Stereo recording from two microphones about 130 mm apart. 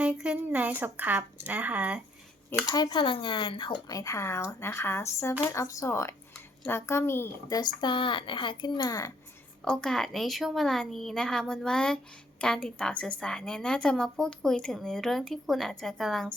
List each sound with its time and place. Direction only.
0.0 s speech: 10° right (ahead or behind)
2.6 s speech: 30° left (ahead or behind)
7.6 s speech: 35° left (ahead or behind)
9.6 s a woman's voice: 5° left (ahead or behind)